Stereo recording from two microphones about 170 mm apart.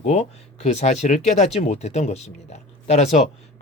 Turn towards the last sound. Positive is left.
turn(degrees=40)  # may be behind; listen again after turning